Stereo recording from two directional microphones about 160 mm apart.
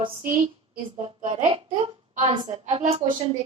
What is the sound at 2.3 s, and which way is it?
Speech, 30° right (ahead or behind).